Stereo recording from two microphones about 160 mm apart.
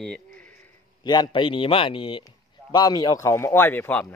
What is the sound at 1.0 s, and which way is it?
A man's voice, 25° left (ahead or behind).